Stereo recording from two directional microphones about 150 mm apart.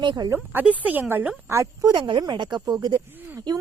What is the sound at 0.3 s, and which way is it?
Speech, 10° right (ahead or behind).